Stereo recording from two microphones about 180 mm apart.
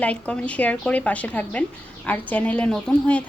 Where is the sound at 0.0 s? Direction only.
5° left (ahead or behind).